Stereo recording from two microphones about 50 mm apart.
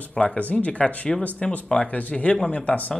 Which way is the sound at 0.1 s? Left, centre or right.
Left.